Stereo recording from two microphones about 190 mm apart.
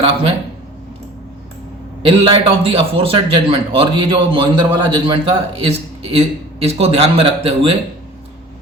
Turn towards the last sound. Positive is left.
turn(degrees=-30)  # may be behind; listen again after turning